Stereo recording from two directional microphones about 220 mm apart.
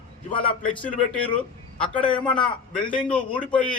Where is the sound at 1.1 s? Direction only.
5° left (ahead or behind).